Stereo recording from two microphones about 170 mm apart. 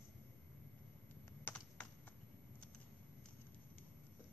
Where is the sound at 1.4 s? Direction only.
10° left (ahead or behind).